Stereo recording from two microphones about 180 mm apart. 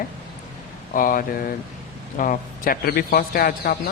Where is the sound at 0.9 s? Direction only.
50° left (ahead or behind).